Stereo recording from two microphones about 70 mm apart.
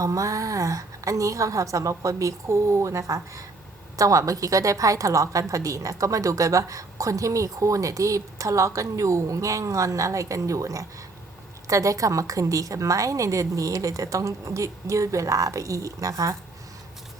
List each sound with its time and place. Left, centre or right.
0.0 s a woman's voice: right